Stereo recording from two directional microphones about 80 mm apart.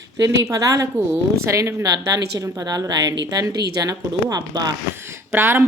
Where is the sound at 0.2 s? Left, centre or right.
Right.